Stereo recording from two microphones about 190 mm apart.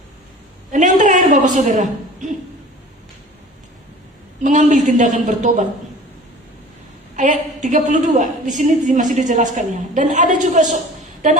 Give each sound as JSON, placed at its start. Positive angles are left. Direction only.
{"t": 0.7, "sound": "a sound", "side_deg": -40}
{"t": 4.4, "sound": "a woman's voice", "side_deg": -40}
{"t": 7.2, "sound": "a woman's voice", "side_deg": -40}